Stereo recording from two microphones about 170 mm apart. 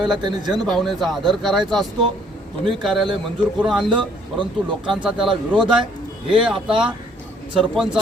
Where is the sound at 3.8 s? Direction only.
30° right (ahead or behind).